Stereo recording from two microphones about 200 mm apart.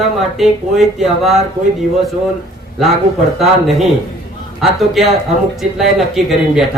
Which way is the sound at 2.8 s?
Centre (ahead or behind).